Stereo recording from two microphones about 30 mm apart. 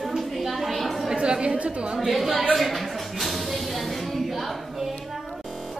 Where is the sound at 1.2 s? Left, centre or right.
Right.